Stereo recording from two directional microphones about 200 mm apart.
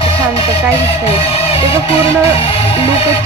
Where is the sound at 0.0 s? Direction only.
30° left (ahead or behind).